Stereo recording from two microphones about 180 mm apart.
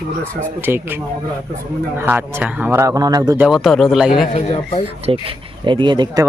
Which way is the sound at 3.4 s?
Centre (ahead or behind).